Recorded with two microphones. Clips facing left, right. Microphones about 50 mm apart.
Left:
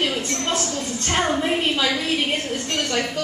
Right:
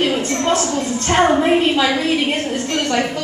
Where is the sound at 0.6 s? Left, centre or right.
Right.